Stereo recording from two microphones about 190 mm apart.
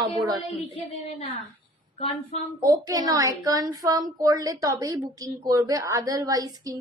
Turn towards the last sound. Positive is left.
turn(degrees=-20)  # may be behind; listen again after turning